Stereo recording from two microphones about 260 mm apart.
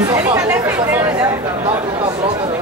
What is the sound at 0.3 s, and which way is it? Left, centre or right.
Chatter, centre.